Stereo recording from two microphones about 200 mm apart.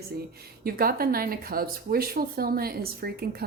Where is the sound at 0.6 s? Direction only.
50° right (ahead or behind).